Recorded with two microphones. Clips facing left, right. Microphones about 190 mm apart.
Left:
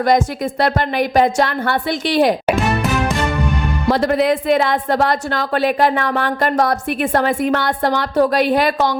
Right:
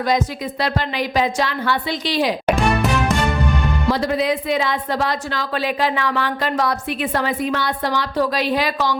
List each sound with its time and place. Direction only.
0.6 s a woman's voice: 55° left (ahead or behind)
3.8 s a woman's voice: 55° left (ahead or behind)